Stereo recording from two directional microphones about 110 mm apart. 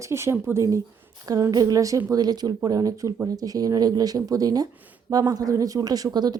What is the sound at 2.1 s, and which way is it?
A woman's voice, 35° right (ahead or behind).